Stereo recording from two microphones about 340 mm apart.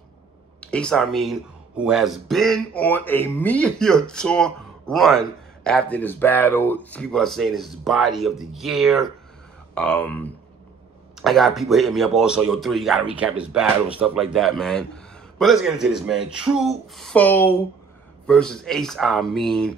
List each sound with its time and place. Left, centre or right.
0.6 s speech: centre